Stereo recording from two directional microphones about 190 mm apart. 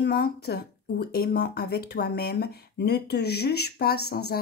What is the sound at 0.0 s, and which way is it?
Speech, 55° left (ahead or behind).